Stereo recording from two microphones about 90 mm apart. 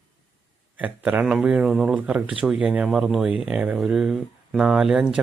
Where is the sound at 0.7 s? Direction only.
15° right (ahead or behind).